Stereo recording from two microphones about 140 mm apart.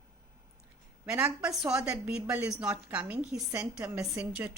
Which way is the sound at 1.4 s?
5° right (ahead or behind).